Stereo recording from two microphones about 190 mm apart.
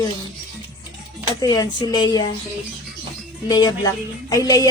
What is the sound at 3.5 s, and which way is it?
Music, 20° left (ahead or behind).